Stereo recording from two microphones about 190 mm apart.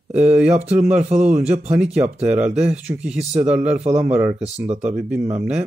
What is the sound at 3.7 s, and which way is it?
Speech, 35° right (ahead or behind).